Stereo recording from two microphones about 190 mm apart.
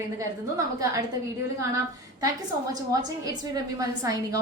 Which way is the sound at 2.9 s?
20° right (ahead or behind).